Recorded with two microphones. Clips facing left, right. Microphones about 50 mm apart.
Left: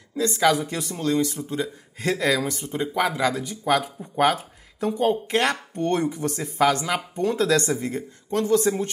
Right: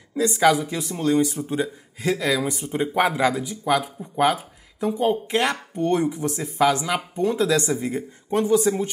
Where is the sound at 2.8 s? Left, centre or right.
Right.